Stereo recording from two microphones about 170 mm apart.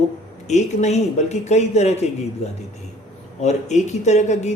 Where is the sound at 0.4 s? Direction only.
40° left (ahead or behind).